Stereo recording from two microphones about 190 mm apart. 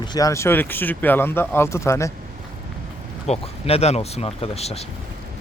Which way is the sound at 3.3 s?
30° left (ahead or behind).